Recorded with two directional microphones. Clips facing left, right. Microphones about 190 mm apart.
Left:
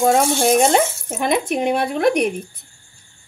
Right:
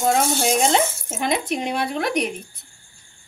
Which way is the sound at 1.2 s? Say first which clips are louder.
Left 5 dB; 55° left (ahead or behind).